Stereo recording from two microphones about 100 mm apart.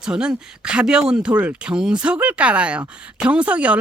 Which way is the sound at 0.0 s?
10° right (ahead or behind).